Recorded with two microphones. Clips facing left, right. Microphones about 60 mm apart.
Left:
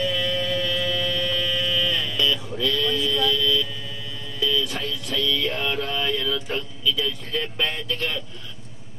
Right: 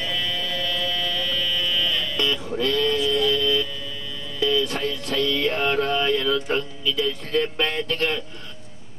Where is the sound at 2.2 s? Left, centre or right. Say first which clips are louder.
Even; right.